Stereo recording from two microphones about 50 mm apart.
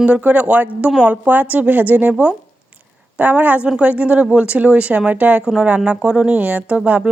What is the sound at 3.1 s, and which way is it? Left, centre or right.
Speech, right.